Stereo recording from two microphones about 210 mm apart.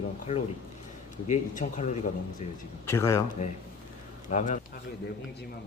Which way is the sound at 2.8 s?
10° left (ahead or behind).